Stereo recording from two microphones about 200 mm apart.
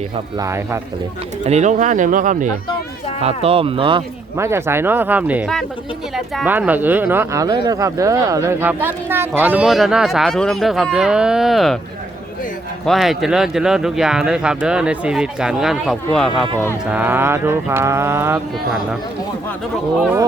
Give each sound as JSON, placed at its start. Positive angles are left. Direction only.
{"t": 0.3, "sound": "speech", "side_deg": -15}
{"t": 1.5, "sound": "speech", "side_deg": -35}
{"t": 3.2, "sound": "speech", "side_deg": -30}
{"t": 4.4, "sound": "speech", "side_deg": -15}
{"t": 12.8, "sound": "speech", "side_deg": 0}
{"t": 20.0, "sound": "speech", "side_deg": -5}